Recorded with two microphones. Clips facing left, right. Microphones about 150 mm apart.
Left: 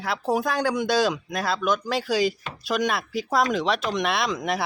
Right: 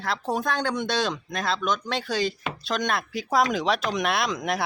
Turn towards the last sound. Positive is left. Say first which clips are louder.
# left 1 dB
turn(degrees=0)  # may be behind; listen again after turning